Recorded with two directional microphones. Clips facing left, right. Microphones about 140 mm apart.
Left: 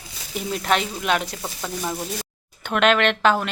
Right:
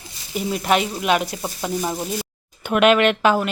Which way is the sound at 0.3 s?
5° right (ahead or behind).